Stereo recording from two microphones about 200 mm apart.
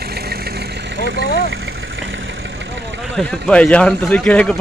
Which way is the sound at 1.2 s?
50° left (ahead or behind).